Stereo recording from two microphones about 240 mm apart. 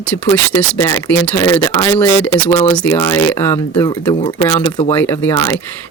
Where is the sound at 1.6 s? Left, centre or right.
Centre.